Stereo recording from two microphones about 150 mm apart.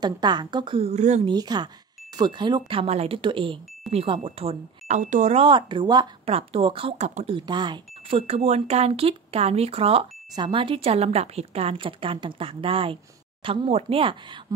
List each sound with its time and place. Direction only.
0.0 s speech: 30° right (ahead or behind); by 1.2 s 50° right (ahead or behind)
1.2 s speech: 30° right (ahead or behind); by 5.4 s 55° right (ahead or behind)
5.4 s speech: 35° right (ahead or behind)
7.3 s speech: 30° right (ahead or behind)